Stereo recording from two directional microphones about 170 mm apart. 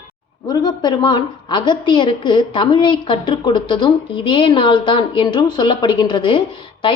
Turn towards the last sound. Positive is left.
turn(degrees=30)  # may be behind; listen again after turning